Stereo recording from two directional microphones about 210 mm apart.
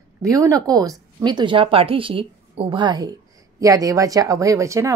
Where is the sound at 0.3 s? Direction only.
15° right (ahead or behind).